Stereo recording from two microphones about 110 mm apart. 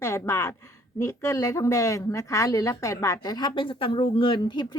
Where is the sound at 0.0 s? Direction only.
25° left (ahead or behind).